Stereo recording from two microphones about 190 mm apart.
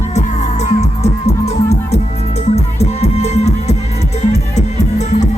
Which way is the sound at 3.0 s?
35° left (ahead or behind).